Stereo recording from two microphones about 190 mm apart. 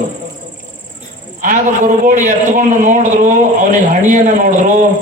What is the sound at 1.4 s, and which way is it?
A man's voice, 45° right (ahead or behind).